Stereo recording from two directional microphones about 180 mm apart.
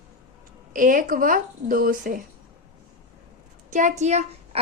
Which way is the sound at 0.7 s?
45° right (ahead or behind).